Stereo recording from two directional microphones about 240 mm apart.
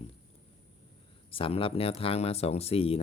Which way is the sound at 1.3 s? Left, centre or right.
Left.